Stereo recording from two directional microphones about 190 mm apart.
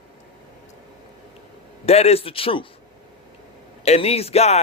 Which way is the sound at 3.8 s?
35° left (ahead or behind).